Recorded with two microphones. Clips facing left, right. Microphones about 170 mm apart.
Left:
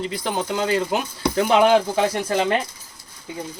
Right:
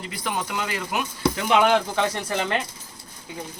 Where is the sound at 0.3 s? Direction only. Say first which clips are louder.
Left 5 dB; 30° left (ahead or behind).